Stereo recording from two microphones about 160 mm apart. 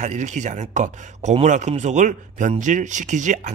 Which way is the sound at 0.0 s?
50° right (ahead or behind).